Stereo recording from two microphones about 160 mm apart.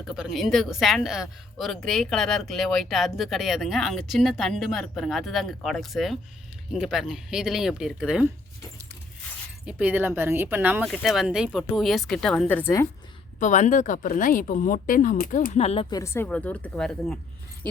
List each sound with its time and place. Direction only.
0.0 s a woman's voice: 5° right (ahead or behind)
9.6 s a woman's voice: 10° right (ahead or behind); by 12.9 s 15° left (ahead or behind)
13.4 s speech: 50° left (ahead or behind)
15.9 s speech: 20° left (ahead or behind); by 17.2 s 5° left (ahead or behind)